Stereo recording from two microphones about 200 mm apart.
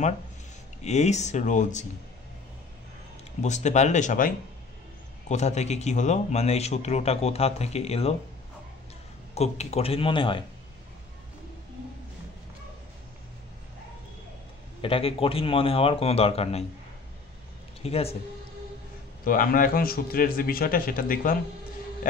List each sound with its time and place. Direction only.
0.8 s speech: 35° left (ahead or behind)
3.4 s speech: 35° left (ahead or behind)
5.3 s speech: 35° left (ahead or behind)
9.3 s a man's voice: 30° left (ahead or behind)
14.8 s a man's voice: 25° left (ahead or behind)
17.8 s a man's voice: 30° left (ahead or behind)
19.2 s a man's voice: 45° left (ahead or behind)